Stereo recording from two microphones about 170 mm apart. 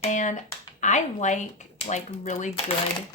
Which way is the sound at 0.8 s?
45° left (ahead or behind).